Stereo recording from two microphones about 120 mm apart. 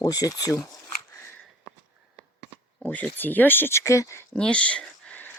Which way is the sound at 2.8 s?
10° left (ahead or behind).